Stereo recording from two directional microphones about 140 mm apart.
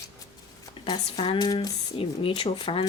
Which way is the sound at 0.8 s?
40° left (ahead or behind).